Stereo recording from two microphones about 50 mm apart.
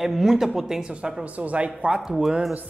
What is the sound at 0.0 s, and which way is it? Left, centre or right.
Speech, centre.